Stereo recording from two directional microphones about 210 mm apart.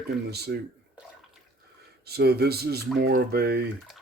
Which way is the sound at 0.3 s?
50° right (ahead or behind).